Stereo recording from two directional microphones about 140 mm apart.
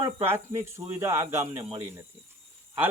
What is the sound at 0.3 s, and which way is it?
Speech, 20° right (ahead or behind).